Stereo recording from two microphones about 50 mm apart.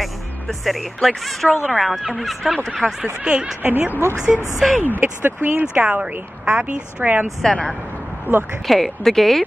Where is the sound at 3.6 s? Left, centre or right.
Right.